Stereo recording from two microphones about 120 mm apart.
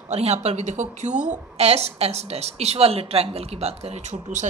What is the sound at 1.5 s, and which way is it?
A woman's voice, 60° right (ahead or behind).